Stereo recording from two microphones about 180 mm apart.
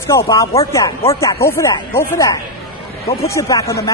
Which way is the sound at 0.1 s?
15° left (ahead or behind).